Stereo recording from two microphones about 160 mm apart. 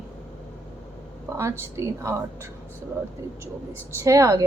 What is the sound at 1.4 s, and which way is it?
A woman's voice, 15° right (ahead or behind).